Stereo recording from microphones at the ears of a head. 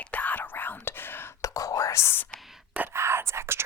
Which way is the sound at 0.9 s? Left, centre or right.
Left.